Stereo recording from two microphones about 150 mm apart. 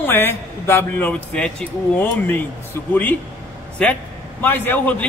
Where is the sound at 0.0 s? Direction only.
15° left (ahead or behind).